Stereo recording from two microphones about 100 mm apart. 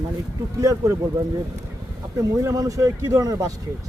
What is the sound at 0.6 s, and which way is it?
Speech, 35° right (ahead or behind).